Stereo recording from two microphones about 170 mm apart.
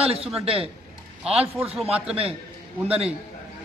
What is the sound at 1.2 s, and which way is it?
A man's voice, 5° right (ahead or behind).